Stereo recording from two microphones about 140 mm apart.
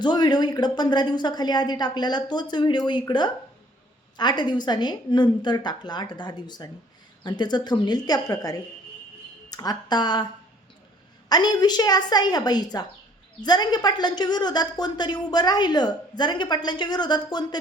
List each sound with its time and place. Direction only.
0.0 s a woman's voice: 30° left (ahead or behind)
11.3 s a woman's voice: 30° left (ahead or behind)